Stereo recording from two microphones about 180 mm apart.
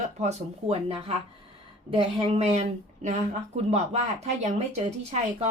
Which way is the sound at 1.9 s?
30° right (ahead or behind).